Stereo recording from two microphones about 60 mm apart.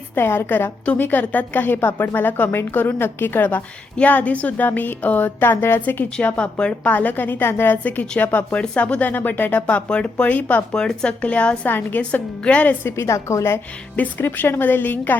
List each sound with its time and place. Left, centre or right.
0.2 s a woman's voice: left
6.1 s speech: centre
6.9 s a woman's voice: left
13.0 s a woman's voice: left
14.2 s a woman's voice: left